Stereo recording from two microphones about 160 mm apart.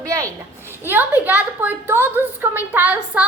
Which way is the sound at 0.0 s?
20° right (ahead or behind).